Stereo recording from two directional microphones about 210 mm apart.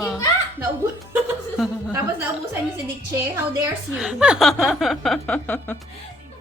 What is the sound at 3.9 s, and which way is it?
A woman's voice, 5° right (ahead or behind).